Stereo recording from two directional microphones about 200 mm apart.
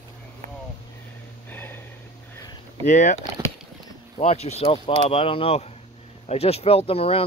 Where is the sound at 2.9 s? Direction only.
35° left (ahead or behind).